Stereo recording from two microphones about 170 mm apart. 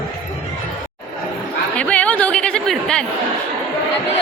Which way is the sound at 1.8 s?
5° left (ahead or behind).